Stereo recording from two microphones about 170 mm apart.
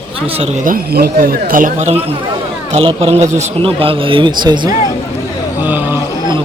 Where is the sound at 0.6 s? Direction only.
60° right (ahead or behind).